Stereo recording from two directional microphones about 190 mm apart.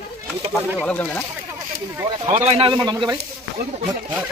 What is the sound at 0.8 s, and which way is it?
Speech, 10° left (ahead or behind).